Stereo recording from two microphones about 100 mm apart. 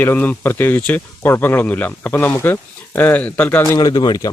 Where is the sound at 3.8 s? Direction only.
45° left (ahead or behind).